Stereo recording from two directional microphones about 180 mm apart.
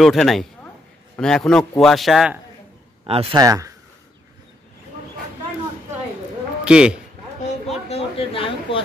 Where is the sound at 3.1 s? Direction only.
35° right (ahead or behind).